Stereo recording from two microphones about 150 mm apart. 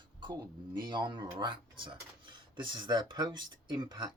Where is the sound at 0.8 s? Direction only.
30° right (ahead or behind).